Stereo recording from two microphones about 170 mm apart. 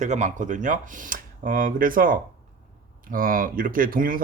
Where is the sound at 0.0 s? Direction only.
45° right (ahead or behind).